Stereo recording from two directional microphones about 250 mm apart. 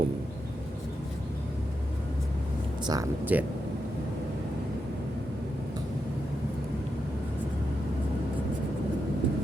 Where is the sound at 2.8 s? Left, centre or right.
Centre.